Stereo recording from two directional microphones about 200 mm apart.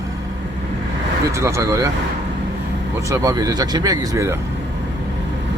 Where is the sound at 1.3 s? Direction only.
15° right (ahead or behind).